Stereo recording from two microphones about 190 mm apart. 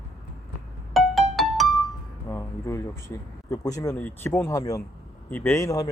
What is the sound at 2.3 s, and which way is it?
A man's voice, 15° left (ahead or behind).